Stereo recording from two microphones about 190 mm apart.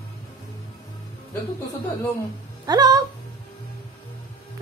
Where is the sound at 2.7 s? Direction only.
20° right (ahead or behind).